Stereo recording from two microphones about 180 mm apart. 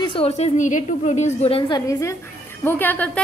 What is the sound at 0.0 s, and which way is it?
A woman's voice, 30° left (ahead or behind).